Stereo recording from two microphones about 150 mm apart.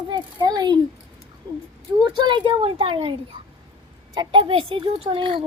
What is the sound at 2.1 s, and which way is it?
Speech, 30° right (ahead or behind).